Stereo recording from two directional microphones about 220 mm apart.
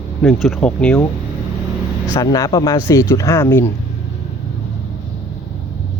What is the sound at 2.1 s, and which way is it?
Speech, 15° left (ahead or behind).